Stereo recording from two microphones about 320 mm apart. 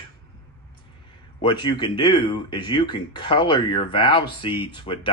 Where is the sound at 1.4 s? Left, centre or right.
Centre.